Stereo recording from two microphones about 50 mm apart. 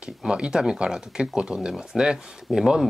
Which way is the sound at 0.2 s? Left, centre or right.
Centre.